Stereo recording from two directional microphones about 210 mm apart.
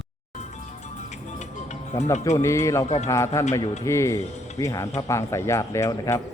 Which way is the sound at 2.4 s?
15° left (ahead or behind).